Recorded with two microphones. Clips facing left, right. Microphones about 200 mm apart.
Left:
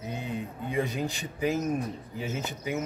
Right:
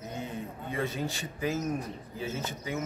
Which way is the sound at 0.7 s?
15° left (ahead or behind).